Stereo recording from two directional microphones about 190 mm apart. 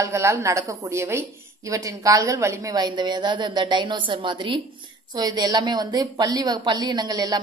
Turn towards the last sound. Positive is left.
turn(degrees=-20)  # may be behind; listen again after turning